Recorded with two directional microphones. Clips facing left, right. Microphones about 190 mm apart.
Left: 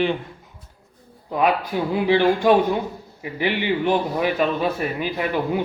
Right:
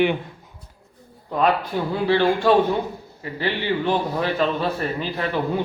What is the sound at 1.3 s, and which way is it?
A man's voice, 10° left (ahead or behind).